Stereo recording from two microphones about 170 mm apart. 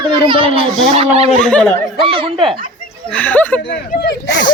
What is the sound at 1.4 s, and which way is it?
Speech, 5° left (ahead or behind).